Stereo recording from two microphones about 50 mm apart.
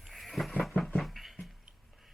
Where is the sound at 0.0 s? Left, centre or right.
Centre.